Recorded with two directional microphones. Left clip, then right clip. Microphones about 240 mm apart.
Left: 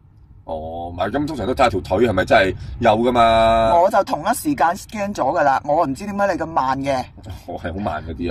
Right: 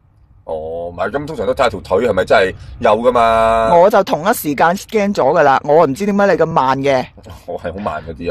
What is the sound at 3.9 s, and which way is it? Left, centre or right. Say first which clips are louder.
Speech: right 5 dB; right.